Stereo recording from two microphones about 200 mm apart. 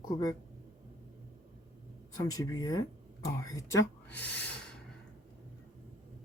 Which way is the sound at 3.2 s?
15° left (ahead or behind).